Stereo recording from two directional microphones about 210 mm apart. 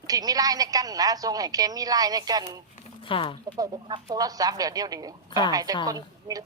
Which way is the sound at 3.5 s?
20° right (ahead or behind).